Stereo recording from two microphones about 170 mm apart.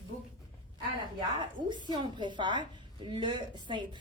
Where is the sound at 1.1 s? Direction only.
25° right (ahead or behind).